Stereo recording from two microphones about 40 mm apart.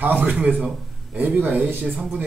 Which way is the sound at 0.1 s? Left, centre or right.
Right.